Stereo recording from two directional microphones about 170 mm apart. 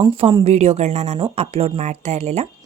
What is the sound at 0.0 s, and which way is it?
A woman's voice, 30° right (ahead or behind).